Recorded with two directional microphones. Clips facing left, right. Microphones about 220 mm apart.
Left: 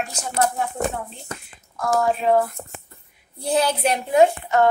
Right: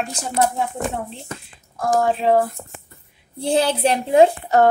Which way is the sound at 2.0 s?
30° right (ahead or behind).